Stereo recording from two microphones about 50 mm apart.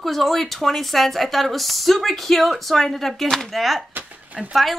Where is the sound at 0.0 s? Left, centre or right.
Centre.